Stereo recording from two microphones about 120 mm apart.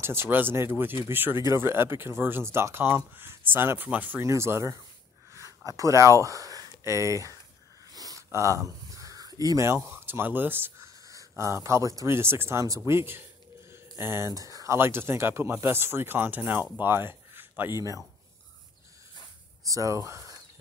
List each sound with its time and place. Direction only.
0.0 s speech: 20° right (ahead or behind)
7.9 s a sound: 30° right (ahead or behind)
9.8 s speech: 20° right (ahead or behind)
11.1 s speech: 25° right (ahead or behind)
19.7 s speech: 25° right (ahead or behind)